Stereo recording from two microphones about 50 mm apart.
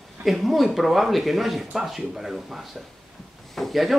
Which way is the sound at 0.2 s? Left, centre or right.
Centre.